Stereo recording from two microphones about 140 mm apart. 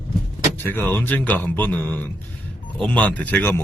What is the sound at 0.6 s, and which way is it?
A man's voice, 15° left (ahead or behind).